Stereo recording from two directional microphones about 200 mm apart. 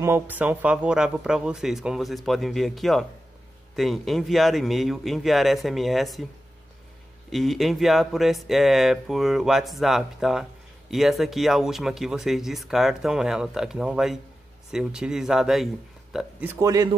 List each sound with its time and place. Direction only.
0.0 s speech: 10° right (ahead or behind)
7.2 s speech: centre (ahead or behind)
16.5 s a man's voice: 15° right (ahead or behind)